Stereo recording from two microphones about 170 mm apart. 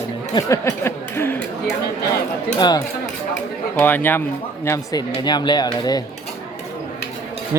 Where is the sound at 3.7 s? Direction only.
10° left (ahead or behind).